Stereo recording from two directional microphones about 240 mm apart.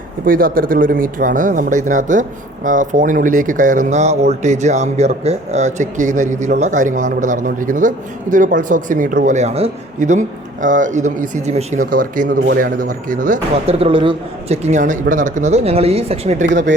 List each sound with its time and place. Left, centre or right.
0.3 s speech: right